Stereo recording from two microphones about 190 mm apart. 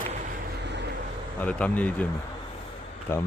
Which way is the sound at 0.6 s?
65° right (ahead or behind).